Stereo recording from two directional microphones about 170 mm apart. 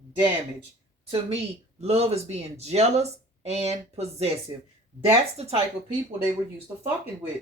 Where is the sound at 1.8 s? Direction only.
35° right (ahead or behind).